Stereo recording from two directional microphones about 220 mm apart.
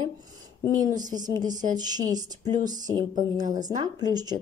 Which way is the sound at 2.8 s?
15° right (ahead or behind).